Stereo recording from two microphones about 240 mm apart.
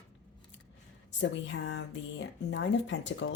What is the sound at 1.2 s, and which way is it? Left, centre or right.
Speech, left.